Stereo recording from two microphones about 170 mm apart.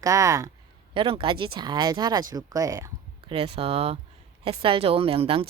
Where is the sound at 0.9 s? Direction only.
30° right (ahead or behind).